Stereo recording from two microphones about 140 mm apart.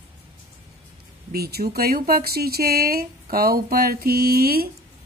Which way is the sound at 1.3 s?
90° right.